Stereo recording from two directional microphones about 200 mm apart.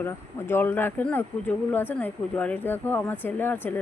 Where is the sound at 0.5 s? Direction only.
10° left (ahead or behind).